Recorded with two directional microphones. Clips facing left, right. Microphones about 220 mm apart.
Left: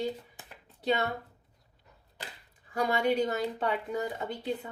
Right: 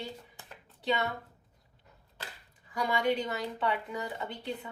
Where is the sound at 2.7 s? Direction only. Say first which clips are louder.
Left 2 dB; 40° left (ahead or behind).